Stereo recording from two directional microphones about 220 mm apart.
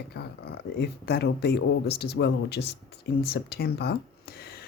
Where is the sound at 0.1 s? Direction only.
45° left (ahead or behind).